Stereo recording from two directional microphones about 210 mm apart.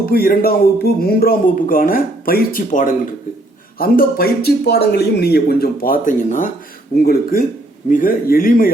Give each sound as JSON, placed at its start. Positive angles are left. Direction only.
{"t": 0.0, "sound": "a man's voice", "side_deg": 45}